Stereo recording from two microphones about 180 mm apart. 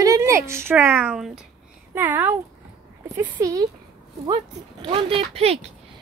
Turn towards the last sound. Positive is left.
turn(degrees=-35)  # may be behind; listen again after turning